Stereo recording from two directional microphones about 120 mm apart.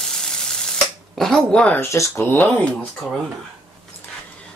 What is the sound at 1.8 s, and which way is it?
Speech, 25° left (ahead or behind).